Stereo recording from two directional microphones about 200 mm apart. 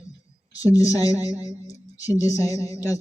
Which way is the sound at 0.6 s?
15° left (ahead or behind).